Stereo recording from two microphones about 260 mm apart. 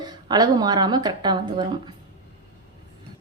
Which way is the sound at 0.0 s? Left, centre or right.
Centre.